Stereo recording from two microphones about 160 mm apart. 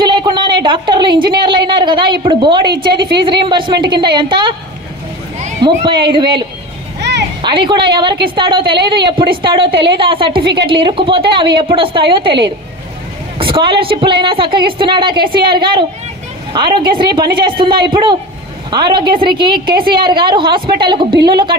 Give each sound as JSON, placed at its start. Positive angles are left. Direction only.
{"t": 0.0, "sound": "a woman's voice", "side_deg": -30}
{"t": 5.6, "sound": "a woman's voice", "side_deg": -30}
{"t": 7.0, "sound": "a sound", "side_deg": -90}
{"t": 7.4, "sound": "a woman's voice", "side_deg": -30}
{"t": 10.4, "sound": "a woman's voice", "side_deg": -90}
{"t": 10.7, "sound": "a woman's voice", "side_deg": -30}
{"t": 13.4, "sound": "a woman's voice", "side_deg": -35}